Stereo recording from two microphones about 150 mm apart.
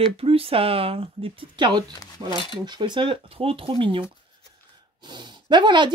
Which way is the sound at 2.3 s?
35° left (ahead or behind).